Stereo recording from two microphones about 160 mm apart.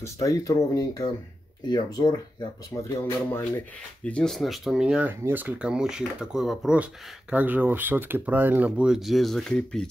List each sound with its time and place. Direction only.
0.0 s speech: 20° left (ahead or behind)